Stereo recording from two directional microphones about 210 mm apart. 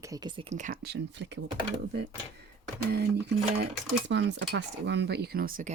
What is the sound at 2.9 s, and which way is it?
Speech, 50° right (ahead or behind).